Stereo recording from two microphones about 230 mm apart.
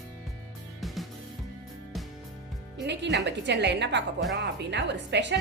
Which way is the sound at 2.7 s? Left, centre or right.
Right.